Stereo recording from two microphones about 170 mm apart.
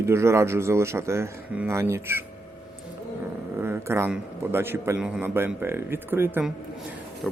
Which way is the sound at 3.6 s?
15° right (ahead or behind).